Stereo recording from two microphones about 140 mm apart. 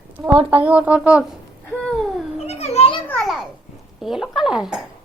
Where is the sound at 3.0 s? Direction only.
10° left (ahead or behind).